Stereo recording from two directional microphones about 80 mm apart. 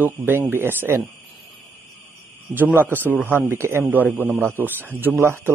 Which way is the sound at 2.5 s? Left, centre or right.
Right.